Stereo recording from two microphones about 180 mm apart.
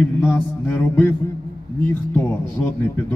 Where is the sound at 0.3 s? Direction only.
15° left (ahead or behind).